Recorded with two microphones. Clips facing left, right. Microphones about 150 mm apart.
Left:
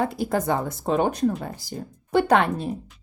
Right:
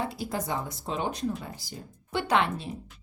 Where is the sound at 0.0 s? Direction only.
50° left (ahead or behind).